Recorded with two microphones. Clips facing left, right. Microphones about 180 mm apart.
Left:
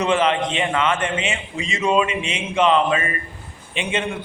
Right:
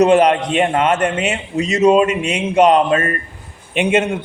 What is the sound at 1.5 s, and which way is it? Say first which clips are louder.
A man's voice: right 8 dB; 40° right (ahead or behind).